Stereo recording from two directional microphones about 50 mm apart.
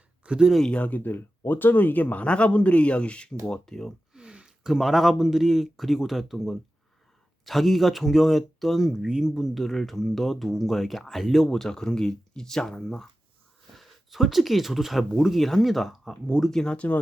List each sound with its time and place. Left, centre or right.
0.3 s speech: centre
0.7 s speech: left
2.2 s speech: left
4.1 s speech: centre
11.5 s speech: centre
13.7 s speech: centre
16.4 s speech: centre
16.7 s speech: left